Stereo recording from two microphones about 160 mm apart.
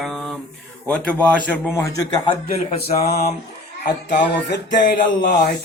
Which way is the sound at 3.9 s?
90° left.